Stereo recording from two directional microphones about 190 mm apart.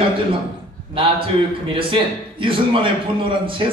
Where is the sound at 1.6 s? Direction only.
25° right (ahead or behind).